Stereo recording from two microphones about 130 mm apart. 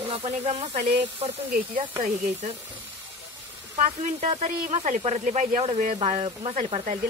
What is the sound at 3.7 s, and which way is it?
Speech, 60° right (ahead or behind).